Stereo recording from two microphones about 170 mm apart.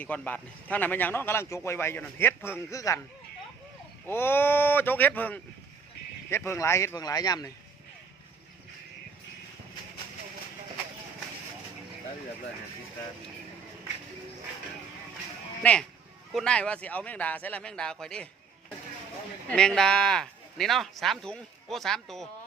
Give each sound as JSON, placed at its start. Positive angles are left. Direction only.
{"t": 0.0, "sound": "a man's voice", "side_deg": 10}
{"t": 4.0, "sound": "a man's voice", "side_deg": 15}
{"t": 15.6, "sound": "a man's voice", "side_deg": 10}
{"t": 19.5, "sound": "speech", "side_deg": 5}